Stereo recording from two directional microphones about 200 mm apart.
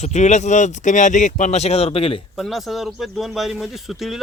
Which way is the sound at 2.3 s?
Centre (ahead or behind).